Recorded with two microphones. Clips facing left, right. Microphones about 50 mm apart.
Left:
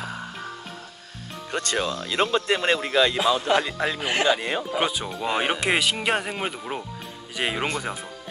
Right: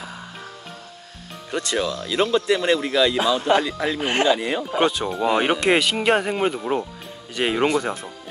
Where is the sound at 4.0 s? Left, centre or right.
Right.